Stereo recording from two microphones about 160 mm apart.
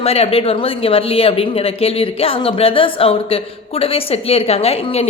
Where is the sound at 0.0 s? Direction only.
40° left (ahead or behind).